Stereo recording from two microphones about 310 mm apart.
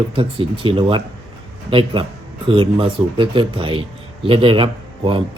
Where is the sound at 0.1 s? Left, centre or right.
Centre.